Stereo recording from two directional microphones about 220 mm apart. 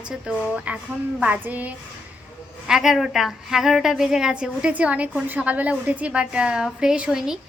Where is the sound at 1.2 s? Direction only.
5° right (ahead or behind).